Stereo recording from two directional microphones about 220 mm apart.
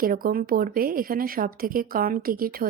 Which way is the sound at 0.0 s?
40° right (ahead or behind).